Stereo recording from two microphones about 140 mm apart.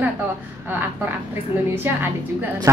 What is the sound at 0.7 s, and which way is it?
A woman's voice, 15° right (ahead or behind).